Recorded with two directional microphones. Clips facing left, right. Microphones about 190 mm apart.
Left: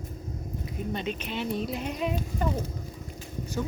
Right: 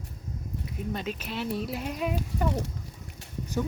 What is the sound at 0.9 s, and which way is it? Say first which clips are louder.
Speech: left 1 dB; 5° right (ahead or behind).